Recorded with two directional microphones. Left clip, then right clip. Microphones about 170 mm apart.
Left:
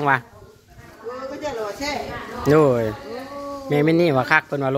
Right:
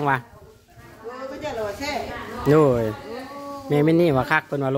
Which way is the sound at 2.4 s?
20° right (ahead or behind).